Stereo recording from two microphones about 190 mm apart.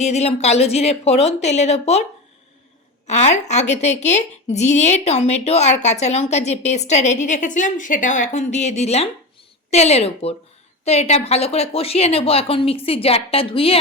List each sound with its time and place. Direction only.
0.0 s a woman's voice: 35° left (ahead or behind)
3.1 s a woman's voice: 35° left (ahead or behind)